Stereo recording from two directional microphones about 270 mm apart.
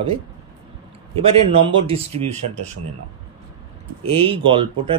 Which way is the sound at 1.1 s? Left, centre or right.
Centre.